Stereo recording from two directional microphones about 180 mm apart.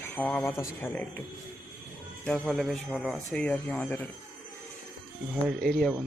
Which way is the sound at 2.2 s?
5° left (ahead or behind).